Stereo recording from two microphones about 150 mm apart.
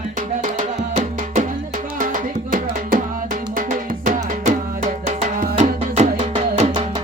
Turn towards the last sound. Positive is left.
turn(degrees=-45)  # may be behind; listen again after turning